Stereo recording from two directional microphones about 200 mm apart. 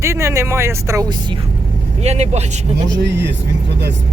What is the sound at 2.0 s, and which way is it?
Speech, 35° right (ahead or behind).